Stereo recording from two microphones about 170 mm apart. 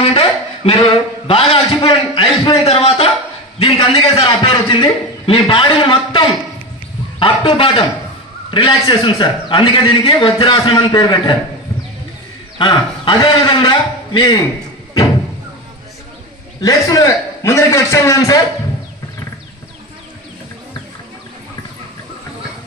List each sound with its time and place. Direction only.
0.0 s a sound: 35° left (ahead or behind)
8.5 s a man's voice: 30° left (ahead or behind)
12.5 s a man's voice: 30° left (ahead or behind)
16.6 s a man's voice: 20° left (ahead or behind)